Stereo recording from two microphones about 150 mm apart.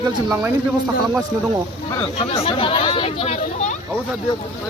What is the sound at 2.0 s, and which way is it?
Speech, 35° left (ahead or behind).